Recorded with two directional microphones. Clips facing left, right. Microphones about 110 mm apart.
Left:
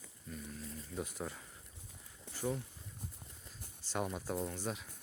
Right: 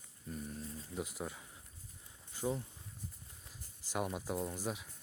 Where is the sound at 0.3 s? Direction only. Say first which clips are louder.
Right 3 dB; 35° right (ahead or behind).